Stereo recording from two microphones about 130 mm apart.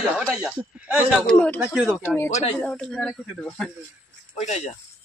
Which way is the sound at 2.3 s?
60° left (ahead or behind).